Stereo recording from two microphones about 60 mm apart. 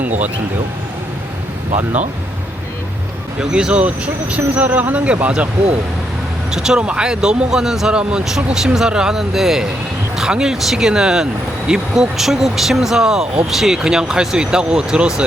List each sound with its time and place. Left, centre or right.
3.4 s speech: centre
6.5 s speech: centre